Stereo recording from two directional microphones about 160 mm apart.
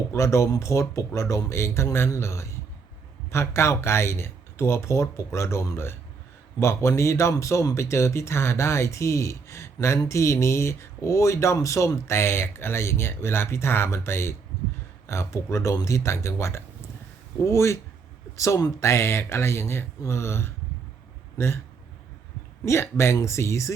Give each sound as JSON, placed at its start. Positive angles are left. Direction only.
{"t": 0.1, "sound": "speech", "side_deg": 20}
{"t": 22.6, "sound": "speech", "side_deg": 15}